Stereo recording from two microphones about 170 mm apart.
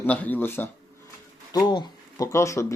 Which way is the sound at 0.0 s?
10° left (ahead or behind).